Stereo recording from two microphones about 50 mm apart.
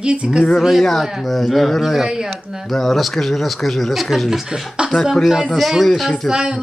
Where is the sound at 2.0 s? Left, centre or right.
Centre.